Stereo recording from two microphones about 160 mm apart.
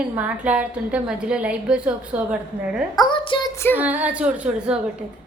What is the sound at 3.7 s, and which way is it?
A woman's voice, 10° right (ahead or behind).